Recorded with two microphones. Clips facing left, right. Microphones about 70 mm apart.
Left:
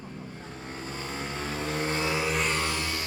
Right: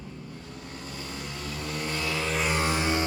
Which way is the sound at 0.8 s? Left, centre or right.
Left.